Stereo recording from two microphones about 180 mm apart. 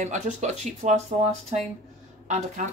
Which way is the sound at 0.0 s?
40° right (ahead or behind).